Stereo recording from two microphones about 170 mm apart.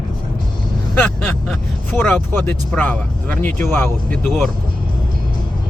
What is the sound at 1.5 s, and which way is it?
Speech, 10° left (ahead or behind).